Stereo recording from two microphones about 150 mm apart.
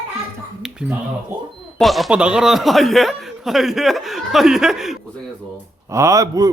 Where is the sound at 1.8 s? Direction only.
Centre (ahead or behind).